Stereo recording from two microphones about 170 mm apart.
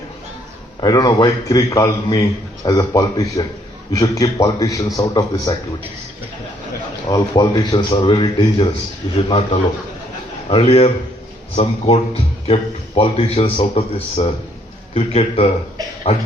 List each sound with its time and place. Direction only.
0.8 s a man's voice: 25° left (ahead or behind)
7.1 s a man's voice: 25° left (ahead or behind)